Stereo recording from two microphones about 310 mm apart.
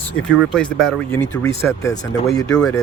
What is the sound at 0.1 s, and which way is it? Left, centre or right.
Speech, left.